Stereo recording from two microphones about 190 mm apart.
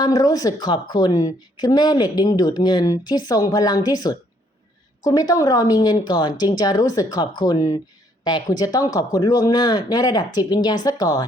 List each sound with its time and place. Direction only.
0.0 s a woman's voice: 20° left (ahead or behind)